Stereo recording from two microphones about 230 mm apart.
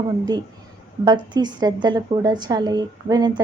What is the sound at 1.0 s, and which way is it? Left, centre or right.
A woman's voice, centre.